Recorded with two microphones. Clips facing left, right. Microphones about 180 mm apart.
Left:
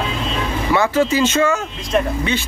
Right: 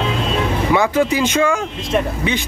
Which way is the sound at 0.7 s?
15° right (ahead or behind).